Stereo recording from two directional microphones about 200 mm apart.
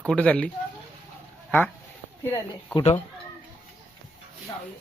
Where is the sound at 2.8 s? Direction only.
30° left (ahead or behind).